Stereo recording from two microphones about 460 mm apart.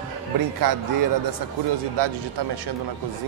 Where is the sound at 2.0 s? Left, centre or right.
Right.